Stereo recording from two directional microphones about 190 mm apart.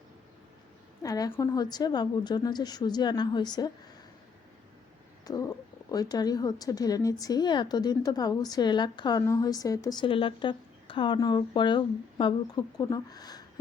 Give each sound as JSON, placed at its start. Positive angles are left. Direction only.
{"t": 1.0, "sound": "speech", "side_deg": 20}
{"t": 5.2, "sound": "speech", "side_deg": 20}